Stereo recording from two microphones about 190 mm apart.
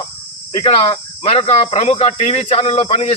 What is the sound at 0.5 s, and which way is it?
Speech, 25° left (ahead or behind).